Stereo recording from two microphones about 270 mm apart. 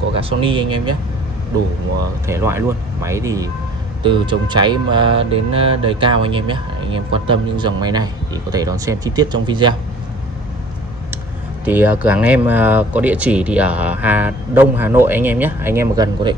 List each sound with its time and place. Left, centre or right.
0.2 s speech: centre
2.2 s speech: centre
11.6 s speech: centre